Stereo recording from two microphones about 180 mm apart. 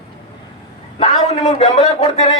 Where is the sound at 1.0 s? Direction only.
35° left (ahead or behind).